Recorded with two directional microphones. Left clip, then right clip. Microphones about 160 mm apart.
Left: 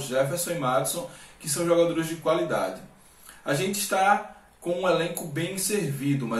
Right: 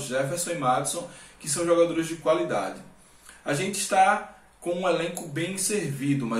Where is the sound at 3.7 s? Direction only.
Centre (ahead or behind).